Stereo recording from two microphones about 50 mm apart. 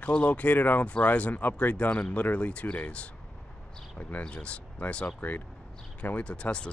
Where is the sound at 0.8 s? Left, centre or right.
Left.